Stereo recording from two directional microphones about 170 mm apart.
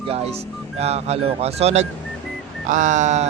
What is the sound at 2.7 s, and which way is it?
Speech, 45° right (ahead or behind).